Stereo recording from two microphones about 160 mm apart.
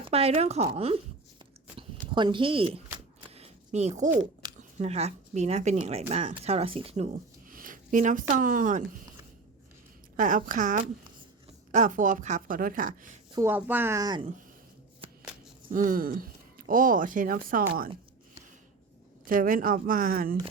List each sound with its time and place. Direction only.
0.0 s speech: 40° right (ahead or behind)
2.1 s speech: 30° right (ahead or behind)
3.2 s zipper: 40° right (ahead or behind)
4.8 s speech: 40° right (ahead or behind)
7.5 s speech: 55° right (ahead or behind)
10.2 s speech: 55° right (ahead or behind)
13.3 s speech: 15° right (ahead or behind)
15.7 s speech: 60° right (ahead or behind)
19.2 s speech: 60° right (ahead or behind)